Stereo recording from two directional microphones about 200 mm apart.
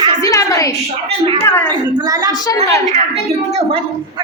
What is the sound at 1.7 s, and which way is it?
Speech, 20° right (ahead or behind).